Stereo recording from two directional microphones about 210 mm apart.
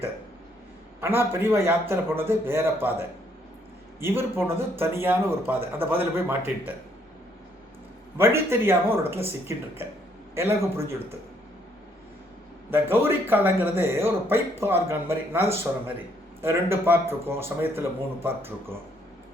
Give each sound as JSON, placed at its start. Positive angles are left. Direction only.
{"t": 1.0, "sound": "speech", "side_deg": -10}
{"t": 4.0, "sound": "speech", "side_deg": -10}
{"t": 8.2, "sound": "speech", "side_deg": -10}
{"t": 12.7, "sound": "speech", "side_deg": -10}